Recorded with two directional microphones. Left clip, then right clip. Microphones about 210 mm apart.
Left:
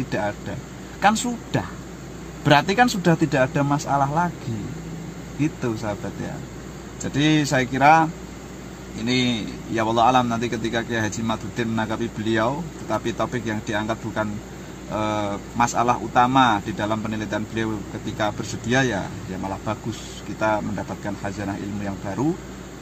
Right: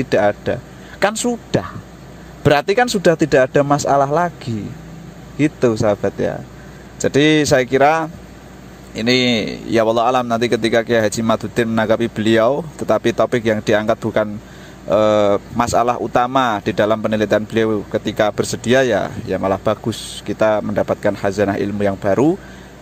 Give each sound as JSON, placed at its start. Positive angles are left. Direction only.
{"t": 0.1, "sound": "speech", "side_deg": -35}
{"t": 5.4, "sound": "speech", "side_deg": -30}
{"t": 7.0, "sound": "speech", "side_deg": -35}